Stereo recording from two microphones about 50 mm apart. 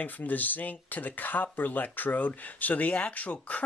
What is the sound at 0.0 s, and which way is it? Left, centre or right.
Speech, left.